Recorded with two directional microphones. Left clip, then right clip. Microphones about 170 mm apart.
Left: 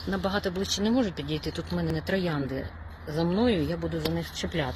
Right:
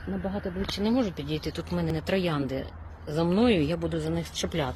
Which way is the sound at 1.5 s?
20° right (ahead or behind).